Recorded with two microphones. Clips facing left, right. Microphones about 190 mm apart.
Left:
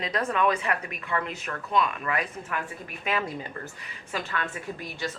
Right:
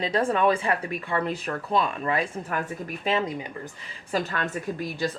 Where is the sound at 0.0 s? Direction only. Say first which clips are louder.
Right 3 dB; 30° right (ahead or behind).